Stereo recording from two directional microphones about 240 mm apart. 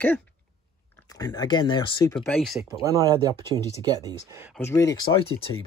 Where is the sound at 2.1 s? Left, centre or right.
Centre.